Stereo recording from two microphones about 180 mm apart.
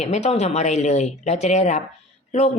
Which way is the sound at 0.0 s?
40° left (ahead or behind).